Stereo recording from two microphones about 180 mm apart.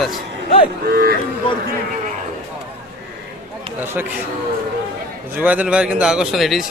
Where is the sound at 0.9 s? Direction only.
55° right (ahead or behind).